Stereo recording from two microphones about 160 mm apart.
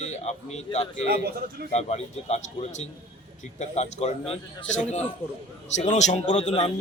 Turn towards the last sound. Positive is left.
turn(degrees=45)  # may be behind; listen again after turning